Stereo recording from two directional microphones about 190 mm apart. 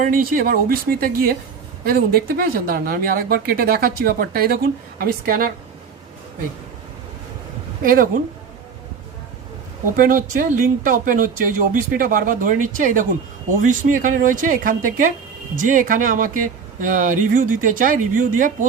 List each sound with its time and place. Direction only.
0.0 s speech: 50° right (ahead or behind)
7.9 s speech: 45° right (ahead or behind)
10.0 s speech: 45° right (ahead or behind)